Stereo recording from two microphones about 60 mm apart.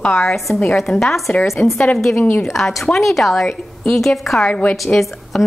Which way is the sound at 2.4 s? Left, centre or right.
Centre.